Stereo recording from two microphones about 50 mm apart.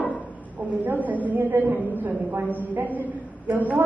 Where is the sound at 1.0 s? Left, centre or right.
Right.